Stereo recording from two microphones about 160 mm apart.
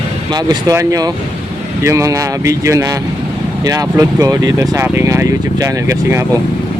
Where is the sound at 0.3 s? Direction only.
25° right (ahead or behind).